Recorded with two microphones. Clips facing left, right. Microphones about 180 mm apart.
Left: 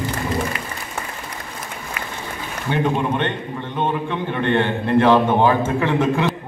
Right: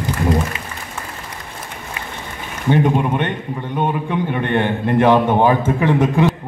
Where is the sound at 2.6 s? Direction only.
15° right (ahead or behind).